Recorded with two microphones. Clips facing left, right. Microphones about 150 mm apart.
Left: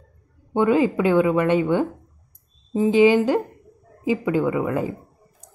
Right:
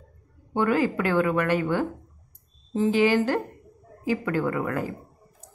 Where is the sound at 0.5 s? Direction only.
20° left (ahead or behind).